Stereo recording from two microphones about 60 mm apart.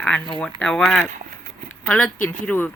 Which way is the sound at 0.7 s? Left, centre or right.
Centre.